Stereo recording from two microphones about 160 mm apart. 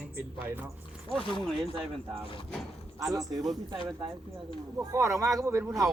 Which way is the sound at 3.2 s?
20° right (ahead or behind).